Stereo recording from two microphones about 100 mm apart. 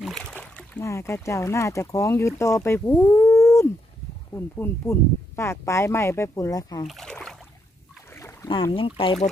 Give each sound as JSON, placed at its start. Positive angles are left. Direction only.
{"t": 0.0, "sound": "a sound", "side_deg": 5}
{"t": 0.7, "sound": "speech", "side_deg": 25}
{"t": 6.9, "sound": "rowboat", "side_deg": 5}
{"t": 8.1, "sound": "boat", "side_deg": 30}
{"t": 8.7, "sound": "speech", "side_deg": 60}